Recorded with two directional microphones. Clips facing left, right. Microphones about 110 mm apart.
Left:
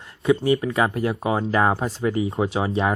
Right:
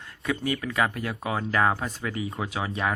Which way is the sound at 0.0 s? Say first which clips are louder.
Left 9 dB; 30° left (ahead or behind).